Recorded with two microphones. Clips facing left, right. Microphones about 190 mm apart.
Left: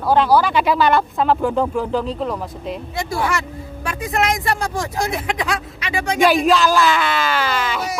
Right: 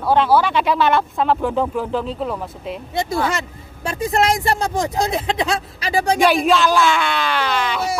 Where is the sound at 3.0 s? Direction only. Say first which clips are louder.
Right 2 dB; 20° right (ahead or behind).